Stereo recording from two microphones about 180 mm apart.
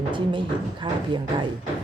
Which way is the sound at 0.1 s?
25° right (ahead or behind).